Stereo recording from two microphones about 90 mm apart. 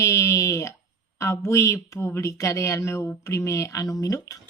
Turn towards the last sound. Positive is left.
turn(degrees=40)  # may be behind; listen again after turning